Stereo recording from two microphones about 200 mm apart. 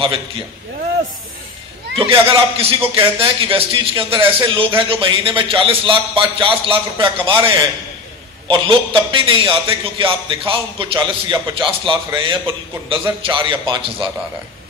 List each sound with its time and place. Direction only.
2.0 s a man's voice: 30° right (ahead or behind)
8.5 s a man's voice: 25° right (ahead or behind)